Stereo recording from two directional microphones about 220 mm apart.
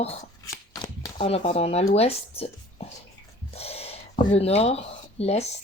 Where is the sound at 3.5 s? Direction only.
25° left (ahead or behind).